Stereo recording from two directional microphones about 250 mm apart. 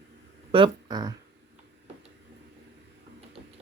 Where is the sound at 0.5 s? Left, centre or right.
Centre.